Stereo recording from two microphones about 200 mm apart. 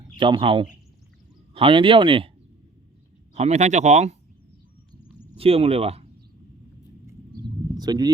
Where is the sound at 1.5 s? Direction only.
25° right (ahead or behind).